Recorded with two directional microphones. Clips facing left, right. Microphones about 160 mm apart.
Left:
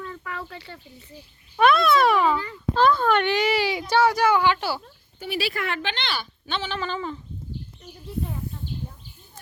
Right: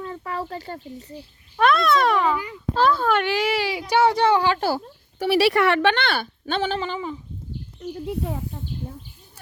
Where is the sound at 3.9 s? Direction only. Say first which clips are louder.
Right 2 dB; 25° right (ahead or behind); by 4.8 s 40° right (ahead or behind).